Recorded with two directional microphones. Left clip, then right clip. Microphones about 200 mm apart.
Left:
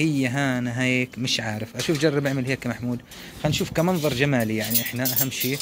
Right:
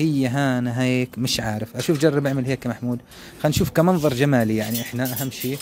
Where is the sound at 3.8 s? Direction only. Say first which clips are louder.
Right 3 dB; 30° right (ahead or behind).